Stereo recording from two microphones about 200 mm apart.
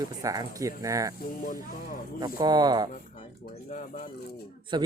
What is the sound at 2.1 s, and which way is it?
Speech, 20° right (ahead or behind).